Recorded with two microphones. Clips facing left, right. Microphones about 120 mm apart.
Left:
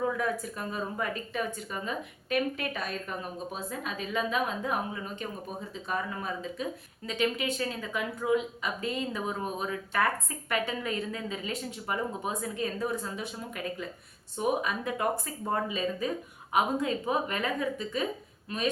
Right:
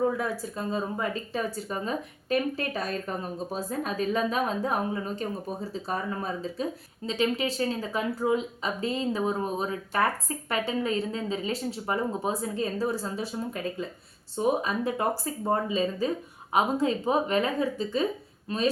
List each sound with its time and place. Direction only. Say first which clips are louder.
0.0 s speech: right 3 dB; 30° right (ahead or behind)
14.3 s speech: right 3 dB; 30° right (ahead or behind)